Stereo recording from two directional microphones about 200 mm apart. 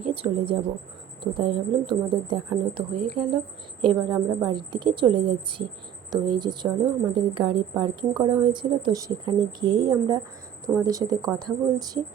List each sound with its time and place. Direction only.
0.0 s a woman's voice: 25° right (ahead or behind)